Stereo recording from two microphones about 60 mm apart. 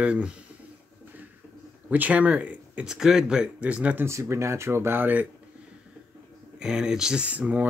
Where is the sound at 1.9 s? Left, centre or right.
Right.